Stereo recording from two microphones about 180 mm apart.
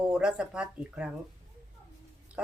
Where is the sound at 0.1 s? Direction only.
5° right (ahead or behind).